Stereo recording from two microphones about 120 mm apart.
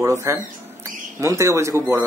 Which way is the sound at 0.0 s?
25° right (ahead or behind).